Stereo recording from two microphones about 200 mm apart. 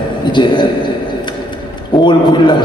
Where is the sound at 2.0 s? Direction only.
25° left (ahead or behind).